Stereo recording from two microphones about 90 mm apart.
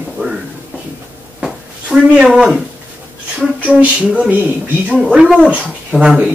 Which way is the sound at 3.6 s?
15° right (ahead or behind).